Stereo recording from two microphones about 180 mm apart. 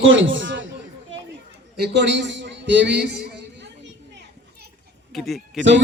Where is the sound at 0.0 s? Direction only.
90° right.